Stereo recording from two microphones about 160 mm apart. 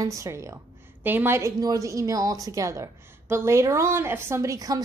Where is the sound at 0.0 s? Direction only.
20° right (ahead or behind).